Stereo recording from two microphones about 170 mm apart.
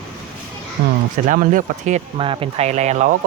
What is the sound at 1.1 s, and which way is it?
Speech, 50° right (ahead or behind).